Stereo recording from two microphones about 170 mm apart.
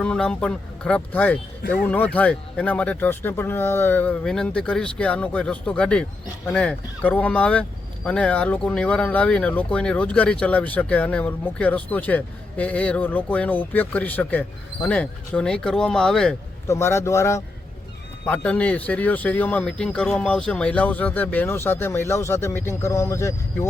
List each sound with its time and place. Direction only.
0.0 s speech: 5° left (ahead or behind)
16.6 s speech: 15° left (ahead or behind)